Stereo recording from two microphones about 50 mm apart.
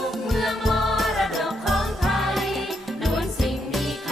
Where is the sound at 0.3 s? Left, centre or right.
Centre.